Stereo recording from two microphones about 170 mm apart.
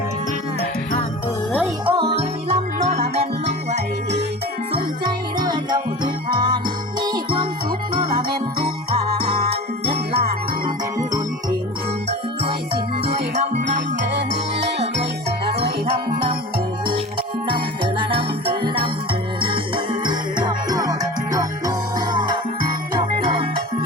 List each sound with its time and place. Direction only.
1.9 s music: 25° right (ahead or behind)
2.1 s music: 40° right (ahead or behind)
5.4 s jingle bell: 25° right (ahead or behind)
7.0 s jingle: 25° right (ahead or behind)
9.8 s jingle bell: 70° right (ahead or behind)
13.3 s music: 40° right (ahead or behind)
14.1 s music: 90° right
15.6 s music: 65° right (ahead or behind)
18.1 s jingle bell: 30° right (ahead or behind)
19.4 s music: 30° right (ahead or behind)